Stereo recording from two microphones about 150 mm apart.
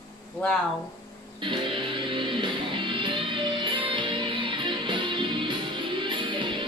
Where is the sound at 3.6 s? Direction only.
35° right (ahead or behind).